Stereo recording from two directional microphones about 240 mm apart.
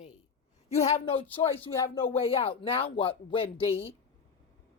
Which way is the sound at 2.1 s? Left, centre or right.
Left.